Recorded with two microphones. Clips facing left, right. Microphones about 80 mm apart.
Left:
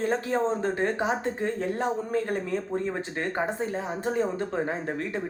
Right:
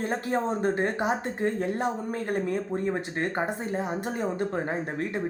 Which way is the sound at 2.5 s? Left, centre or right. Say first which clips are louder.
Right 1 dB; right.